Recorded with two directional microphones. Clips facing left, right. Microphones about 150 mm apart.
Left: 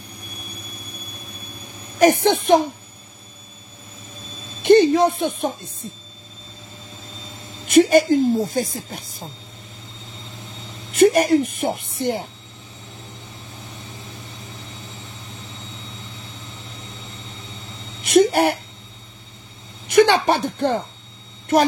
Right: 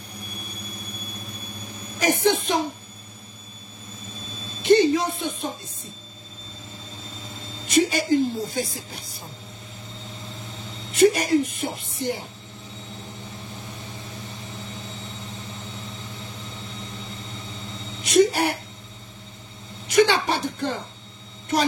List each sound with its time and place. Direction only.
2.2 s speech: 55° left (ahead or behind)
4.6 s speech: 55° left (ahead or behind)
7.6 s speech: 55° left (ahead or behind)
11.0 s speech: 50° left (ahead or behind)
18.0 s speech: 55° left (ahead or behind)
19.9 s speech: 55° left (ahead or behind)